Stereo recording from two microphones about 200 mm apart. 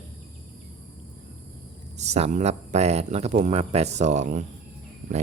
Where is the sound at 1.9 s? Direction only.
35° right (ahead or behind).